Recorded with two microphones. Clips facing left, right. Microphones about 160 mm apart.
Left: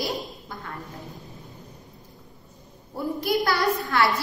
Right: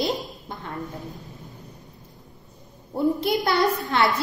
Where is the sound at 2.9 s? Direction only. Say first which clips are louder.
Right 3 dB; 25° right (ahead or behind).